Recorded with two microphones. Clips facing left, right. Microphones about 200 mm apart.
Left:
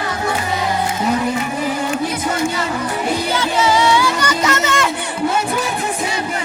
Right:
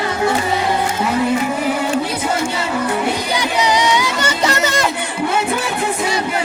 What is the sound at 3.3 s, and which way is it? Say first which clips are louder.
Music: left 1 dB; 15° right (ahead or behind).